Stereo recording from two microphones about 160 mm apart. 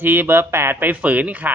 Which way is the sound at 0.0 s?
15° right (ahead or behind).